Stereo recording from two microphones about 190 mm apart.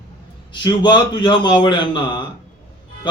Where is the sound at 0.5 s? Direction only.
25° left (ahead or behind).